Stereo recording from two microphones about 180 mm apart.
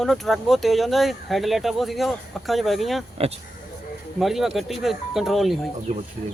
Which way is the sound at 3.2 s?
35° right (ahead or behind).